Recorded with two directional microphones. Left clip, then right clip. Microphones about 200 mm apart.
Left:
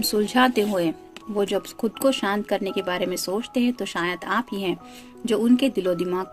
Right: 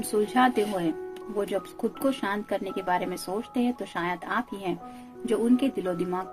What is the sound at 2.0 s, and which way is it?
Speech, 40° left (ahead or behind).